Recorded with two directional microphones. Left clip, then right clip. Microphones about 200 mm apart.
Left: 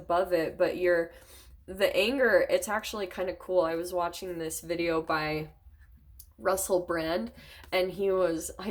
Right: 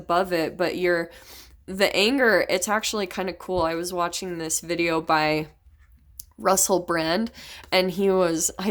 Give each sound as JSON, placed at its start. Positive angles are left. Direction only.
{"t": 0.1, "sound": "speech", "side_deg": -45}